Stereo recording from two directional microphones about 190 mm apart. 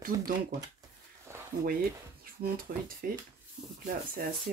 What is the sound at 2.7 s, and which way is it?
Speech, 50° right (ahead or behind).